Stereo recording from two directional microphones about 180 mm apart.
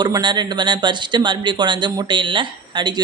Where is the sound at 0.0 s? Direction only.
25° right (ahead or behind).